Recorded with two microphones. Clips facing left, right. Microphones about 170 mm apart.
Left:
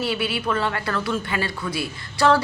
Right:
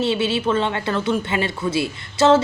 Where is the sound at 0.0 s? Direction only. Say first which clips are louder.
Right 5 dB; 25° right (ahead or behind).